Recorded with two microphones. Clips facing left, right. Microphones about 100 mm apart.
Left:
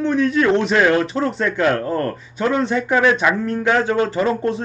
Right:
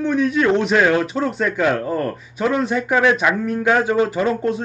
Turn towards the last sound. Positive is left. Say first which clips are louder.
# even
turn(degrees=0)  # may be behind; listen again after turning